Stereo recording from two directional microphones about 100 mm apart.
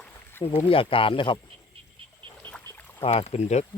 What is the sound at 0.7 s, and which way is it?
Speech, 65° left (ahead or behind).